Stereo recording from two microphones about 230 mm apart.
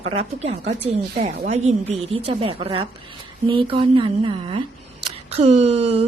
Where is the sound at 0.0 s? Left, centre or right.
Right.